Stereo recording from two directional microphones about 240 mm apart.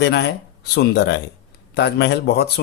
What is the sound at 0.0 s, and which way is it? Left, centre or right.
Speech, left.